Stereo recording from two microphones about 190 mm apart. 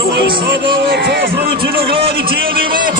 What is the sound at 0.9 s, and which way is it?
Speech, 60° right (ahead or behind).